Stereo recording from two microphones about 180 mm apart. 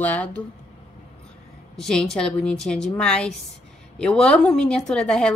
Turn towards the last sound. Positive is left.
turn(degrees=5)  # may be behind; listen again after turning